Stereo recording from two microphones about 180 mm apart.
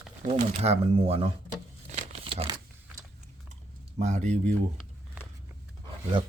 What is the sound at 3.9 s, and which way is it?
Speech, 40° right (ahead or behind).